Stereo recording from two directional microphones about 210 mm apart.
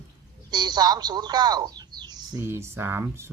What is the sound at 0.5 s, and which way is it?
Speech, 20° right (ahead or behind).